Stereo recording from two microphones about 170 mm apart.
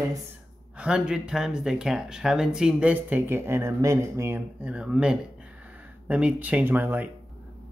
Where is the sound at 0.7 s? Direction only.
5° right (ahead or behind).